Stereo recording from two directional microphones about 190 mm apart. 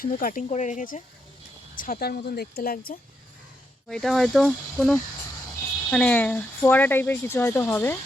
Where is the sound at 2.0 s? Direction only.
55° left (ahead or behind).